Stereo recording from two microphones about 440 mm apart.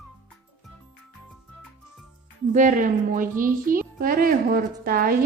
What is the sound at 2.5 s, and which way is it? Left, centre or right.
A woman's voice, centre.